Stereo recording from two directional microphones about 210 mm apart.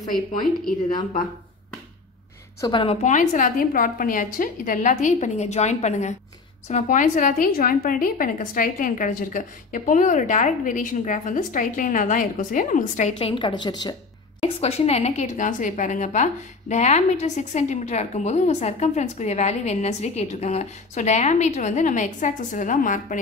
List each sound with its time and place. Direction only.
2.6 s a woman's voice: 25° left (ahead or behind)
14.4 s a woman's voice: 30° left (ahead or behind)